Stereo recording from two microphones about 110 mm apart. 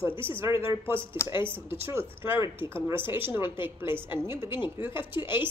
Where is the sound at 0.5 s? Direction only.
55° left (ahead or behind).